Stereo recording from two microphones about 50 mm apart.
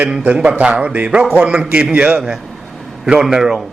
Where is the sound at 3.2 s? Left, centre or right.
Centre.